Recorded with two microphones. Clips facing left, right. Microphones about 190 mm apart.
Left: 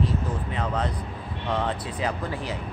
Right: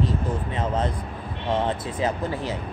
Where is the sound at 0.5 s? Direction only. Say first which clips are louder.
Right 2 dB; 25° right (ahead or behind).